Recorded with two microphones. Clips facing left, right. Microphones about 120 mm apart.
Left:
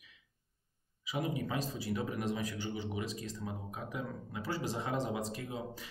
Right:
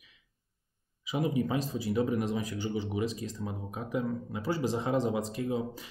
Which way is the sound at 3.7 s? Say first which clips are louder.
Right 8 dB; 25° right (ahead or behind).